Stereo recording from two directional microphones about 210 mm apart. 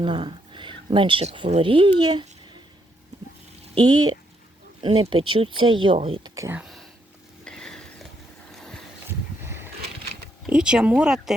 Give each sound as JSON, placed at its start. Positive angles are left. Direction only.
{"t": 0.0, "sound": "speech", "side_deg": -25}
{"t": 3.8, "sound": "speech", "side_deg": -20}
{"t": 7.4, "sound": "stir", "side_deg": 5}
{"t": 8.5, "sound": "a sound", "side_deg": 0}
{"t": 9.0, "sound": "a sound", "side_deg": -10}
{"t": 10.4, "sound": "speech", "side_deg": -5}